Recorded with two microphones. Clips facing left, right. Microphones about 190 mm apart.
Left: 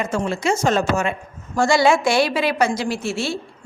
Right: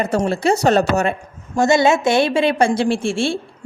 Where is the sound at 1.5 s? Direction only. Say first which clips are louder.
Right 2 dB; 20° right (ahead or behind).